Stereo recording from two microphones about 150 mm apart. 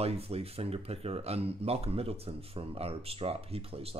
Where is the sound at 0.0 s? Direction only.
40° right (ahead or behind).